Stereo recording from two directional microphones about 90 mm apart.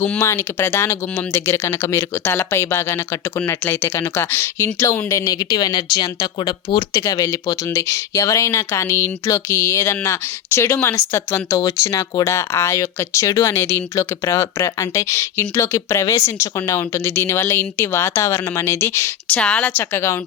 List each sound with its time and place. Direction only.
0.2 s speech: 30° left (ahead or behind); by 6.8 s 55° left (ahead or behind)
6.9 s speech: 40° left (ahead or behind)
11.5 s speech: 40° left (ahead or behind)
19.3 s speech: 15° left (ahead or behind)